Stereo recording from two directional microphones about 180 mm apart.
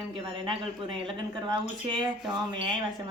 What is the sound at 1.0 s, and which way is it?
A woman's voice, 25° right (ahead or behind).